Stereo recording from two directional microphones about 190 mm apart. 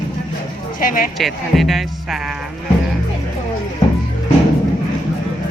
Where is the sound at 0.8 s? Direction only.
45° left (ahead or behind).